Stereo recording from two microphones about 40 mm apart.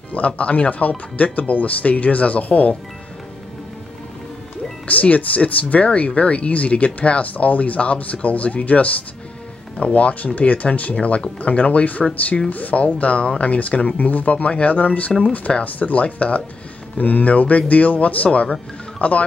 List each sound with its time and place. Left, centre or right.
0.1 s speech: left
5.0 s speech: left
15.1 s speech: centre
15.6 s speech: left